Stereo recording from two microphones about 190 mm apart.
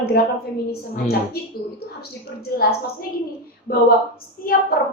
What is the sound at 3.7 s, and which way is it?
A woman's voice, 55° left (ahead or behind).